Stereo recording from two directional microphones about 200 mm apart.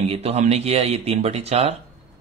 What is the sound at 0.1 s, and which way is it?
Speech, 30° right (ahead or behind).